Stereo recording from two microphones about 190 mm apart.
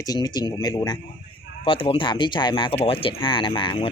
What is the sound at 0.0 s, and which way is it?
Speech, 20° left (ahead or behind).